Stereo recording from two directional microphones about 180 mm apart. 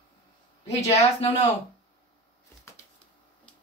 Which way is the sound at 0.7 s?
35° left (ahead or behind).